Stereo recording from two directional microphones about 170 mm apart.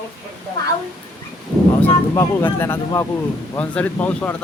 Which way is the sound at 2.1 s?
15° left (ahead or behind).